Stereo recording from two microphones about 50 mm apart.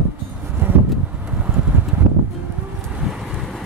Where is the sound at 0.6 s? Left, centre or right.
Right.